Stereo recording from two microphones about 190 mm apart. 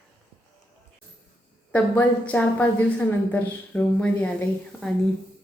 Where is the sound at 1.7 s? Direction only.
10° left (ahead or behind).